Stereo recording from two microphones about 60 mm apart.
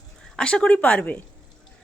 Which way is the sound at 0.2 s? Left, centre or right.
Centre.